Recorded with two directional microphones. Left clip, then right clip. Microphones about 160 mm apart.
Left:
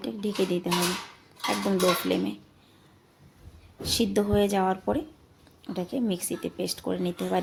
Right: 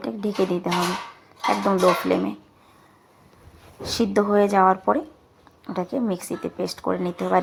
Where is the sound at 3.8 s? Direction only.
5° left (ahead or behind).